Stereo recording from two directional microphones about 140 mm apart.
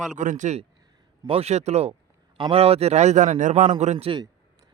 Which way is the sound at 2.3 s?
40° right (ahead or behind).